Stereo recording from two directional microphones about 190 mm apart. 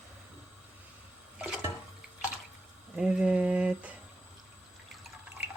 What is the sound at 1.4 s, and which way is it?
Toilet flush, 5° right (ahead or behind).